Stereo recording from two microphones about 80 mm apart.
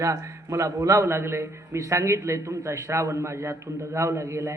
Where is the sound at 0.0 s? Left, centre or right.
Right.